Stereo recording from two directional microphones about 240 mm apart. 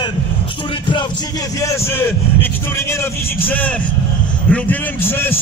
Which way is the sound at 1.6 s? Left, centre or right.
Centre.